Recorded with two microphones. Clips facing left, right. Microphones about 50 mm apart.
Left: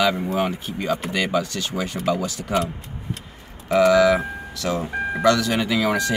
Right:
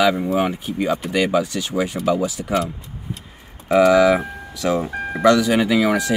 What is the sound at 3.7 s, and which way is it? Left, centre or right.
Speech, centre.